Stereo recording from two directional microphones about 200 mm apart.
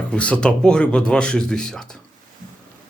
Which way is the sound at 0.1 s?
5° left (ahead or behind).